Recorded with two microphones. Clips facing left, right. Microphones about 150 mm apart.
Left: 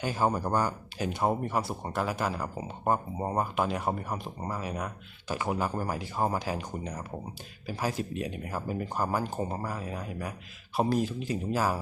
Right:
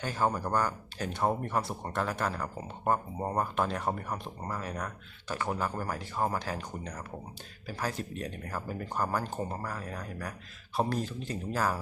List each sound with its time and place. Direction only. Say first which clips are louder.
0.0 s speech: left 2 dB; 10° left (ahead or behind)